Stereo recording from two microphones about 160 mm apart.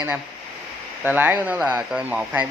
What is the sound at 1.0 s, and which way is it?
Speech, 10° right (ahead or behind).